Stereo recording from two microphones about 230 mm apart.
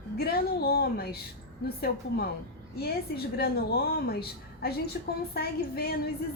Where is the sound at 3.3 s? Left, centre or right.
Left.